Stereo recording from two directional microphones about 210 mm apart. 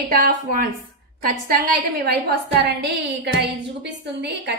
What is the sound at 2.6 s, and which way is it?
A woman's voice, 60° right (ahead or behind).